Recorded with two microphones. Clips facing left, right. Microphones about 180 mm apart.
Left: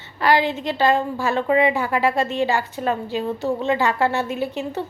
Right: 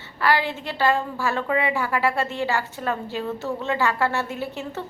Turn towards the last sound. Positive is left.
turn(degrees=15)  # may be behind; listen again after turning